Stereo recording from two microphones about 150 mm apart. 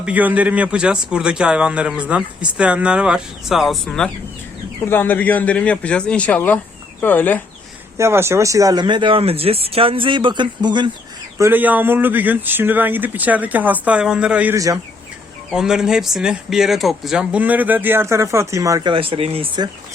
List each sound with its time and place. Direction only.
0.0 s a man's voice: 10° right (ahead or behind); by 7.4 s 15° left (ahead or behind)
7.9 s speech: 15° right (ahead or behind)
11.3 s a man's voice: 15° right (ahead or behind)
14.5 s speech: 20° right (ahead or behind)
15.4 s a man's voice: 5° right (ahead or behind); by 18.9 s 20° right (ahead or behind)
18.9 s speech: 35° right (ahead or behind)